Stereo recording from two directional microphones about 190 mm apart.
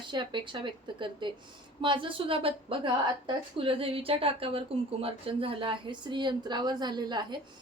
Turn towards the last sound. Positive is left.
turn(degrees=-20)  # may be behind; listen again after turning